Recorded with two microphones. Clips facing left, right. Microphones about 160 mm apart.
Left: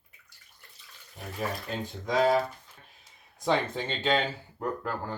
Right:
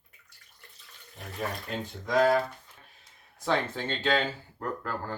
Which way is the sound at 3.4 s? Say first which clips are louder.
Left 1 dB; 15° left (ahead or behind).